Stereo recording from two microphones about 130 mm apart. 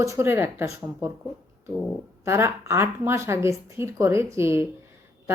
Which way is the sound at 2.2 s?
20° right (ahead or behind).